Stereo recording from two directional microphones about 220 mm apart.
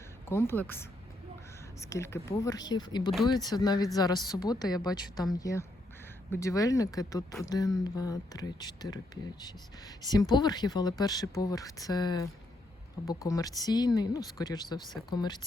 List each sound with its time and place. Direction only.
0.3 s speech: 10° left (ahead or behind)